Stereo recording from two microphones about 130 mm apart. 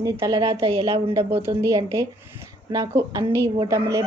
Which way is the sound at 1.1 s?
20° right (ahead or behind).